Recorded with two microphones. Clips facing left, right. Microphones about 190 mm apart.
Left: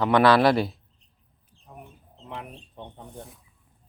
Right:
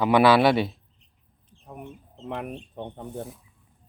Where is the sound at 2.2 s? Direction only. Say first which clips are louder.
Right 6 dB; 55° right (ahead or behind).